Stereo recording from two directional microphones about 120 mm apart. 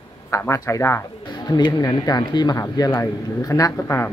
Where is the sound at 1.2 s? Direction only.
35° left (ahead or behind).